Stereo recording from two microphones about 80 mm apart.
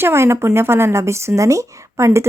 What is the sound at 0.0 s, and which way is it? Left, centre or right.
Speech, right.